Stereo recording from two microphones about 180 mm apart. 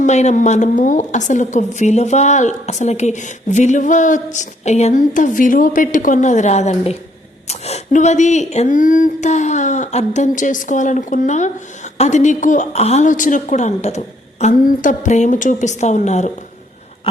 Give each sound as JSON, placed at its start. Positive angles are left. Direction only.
{"t": 0.0, "sound": "a woman's voice", "side_deg": 40}